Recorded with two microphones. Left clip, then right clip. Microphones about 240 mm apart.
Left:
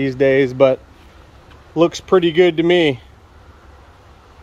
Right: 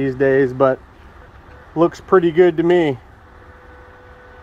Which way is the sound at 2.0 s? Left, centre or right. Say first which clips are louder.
Right 2 dB; left.